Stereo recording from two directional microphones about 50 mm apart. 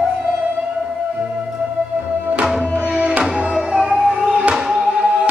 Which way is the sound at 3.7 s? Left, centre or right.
Centre.